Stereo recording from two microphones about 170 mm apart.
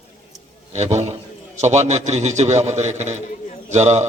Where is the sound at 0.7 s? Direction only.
40° right (ahead or behind).